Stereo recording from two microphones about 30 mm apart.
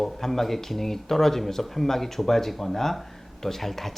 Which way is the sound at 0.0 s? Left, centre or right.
Centre.